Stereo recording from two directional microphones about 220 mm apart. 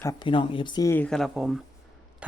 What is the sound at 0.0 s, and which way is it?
Speech, 15° left (ahead or behind).